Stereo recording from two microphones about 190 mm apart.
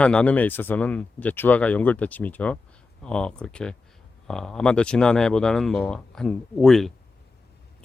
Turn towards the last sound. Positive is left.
turn(degrees=0)  # may be behind; listen again after turning